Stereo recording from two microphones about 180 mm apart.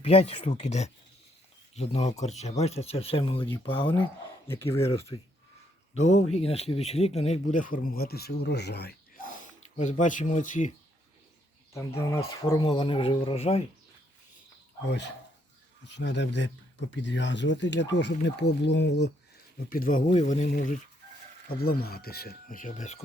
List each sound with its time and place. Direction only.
0.0 s speech: 35° left (ahead or behind)
4.4 s speech: 15° left (ahead or behind)
5.1 s speech: 25° left (ahead or behind)
5.9 s speech: 40° left (ahead or behind)
11.9 s speech: 15° left (ahead or behind); by 13.7 s 35° left (ahead or behind)
14.8 s speech: 75° left (ahead or behind)
19.5 s speech: 50° left (ahead or behind)
21.5 s speech: 60° left (ahead or behind)